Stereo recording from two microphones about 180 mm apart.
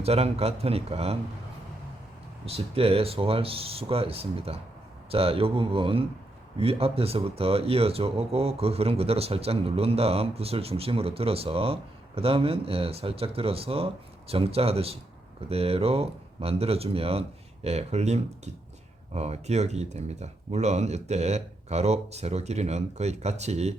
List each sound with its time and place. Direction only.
0.0 s speech: 35° right (ahead or behind)
2.5 s speech: 30° right (ahead or behind)